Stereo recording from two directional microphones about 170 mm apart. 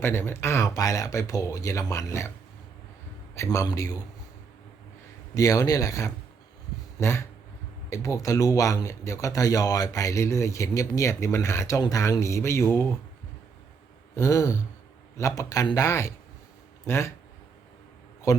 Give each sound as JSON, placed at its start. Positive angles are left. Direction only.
{"t": 0.0, "sound": "speech", "side_deg": 15}
{"t": 3.3, "sound": "speech", "side_deg": 15}
{"t": 5.3, "sound": "speech", "side_deg": 20}
{"t": 14.2, "sound": "speech", "side_deg": 20}
{"t": 18.3, "sound": "a man's voice", "side_deg": 15}